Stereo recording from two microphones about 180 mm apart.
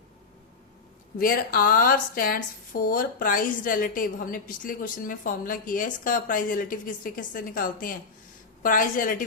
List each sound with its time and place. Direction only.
1.2 s speech: 55° left (ahead or behind)